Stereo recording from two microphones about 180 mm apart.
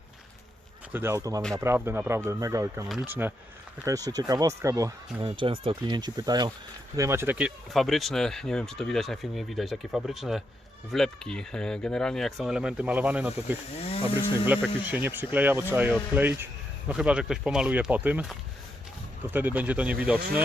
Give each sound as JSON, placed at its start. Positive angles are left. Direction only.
{"t": 0.9, "sound": "speech", "side_deg": -15}
{"t": 5.4, "sound": "speech", "side_deg": -30}
{"t": 13.7, "sound": "speech", "side_deg": 35}
{"t": 14.8, "sound": "speech", "side_deg": -10}